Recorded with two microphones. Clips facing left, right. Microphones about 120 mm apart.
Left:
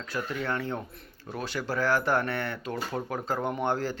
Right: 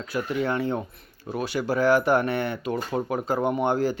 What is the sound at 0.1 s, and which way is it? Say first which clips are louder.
Speech: right 5 dB; 15° right (ahead or behind).